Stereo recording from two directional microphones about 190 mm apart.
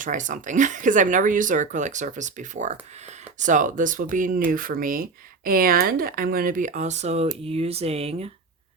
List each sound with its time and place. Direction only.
0.0 s speech: 40° right (ahead or behind)